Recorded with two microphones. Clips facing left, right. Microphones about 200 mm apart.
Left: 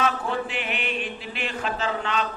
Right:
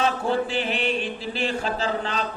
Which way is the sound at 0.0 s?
30° right (ahead or behind).